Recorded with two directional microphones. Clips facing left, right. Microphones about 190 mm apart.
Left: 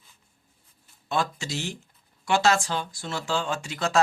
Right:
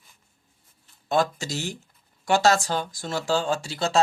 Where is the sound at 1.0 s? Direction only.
40° right (ahead or behind).